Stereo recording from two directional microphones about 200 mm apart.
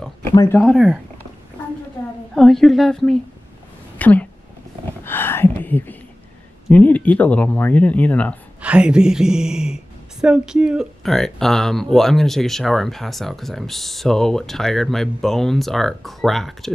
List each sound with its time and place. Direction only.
0.3 s speech: 15° left (ahead or behind)
0.6 s speech: centre (ahead or behind)
2.3 s speech: centre (ahead or behind)
5.0 s a sound: 10° left (ahead or behind)
6.7 s speech: 5° left (ahead or behind)
8.5 s speech: 5° right (ahead or behind)